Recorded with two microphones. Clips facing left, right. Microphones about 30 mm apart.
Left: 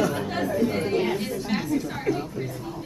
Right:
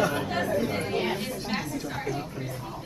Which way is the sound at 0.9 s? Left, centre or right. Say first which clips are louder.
Left 4 dB; centre.